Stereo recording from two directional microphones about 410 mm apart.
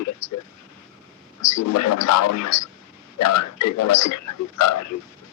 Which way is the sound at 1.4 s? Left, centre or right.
Left.